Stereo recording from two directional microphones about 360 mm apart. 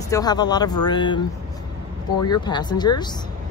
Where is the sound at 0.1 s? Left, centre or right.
Centre.